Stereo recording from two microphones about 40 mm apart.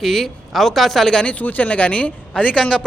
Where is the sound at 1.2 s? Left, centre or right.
Left.